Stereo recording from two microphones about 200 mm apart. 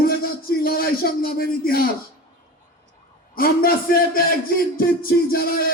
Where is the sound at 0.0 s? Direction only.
50° left (ahead or behind).